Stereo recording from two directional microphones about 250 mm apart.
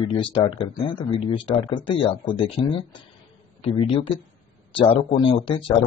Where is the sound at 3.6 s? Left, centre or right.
Left.